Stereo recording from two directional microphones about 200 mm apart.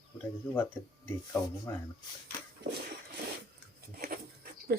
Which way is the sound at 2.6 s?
55° right (ahead or behind).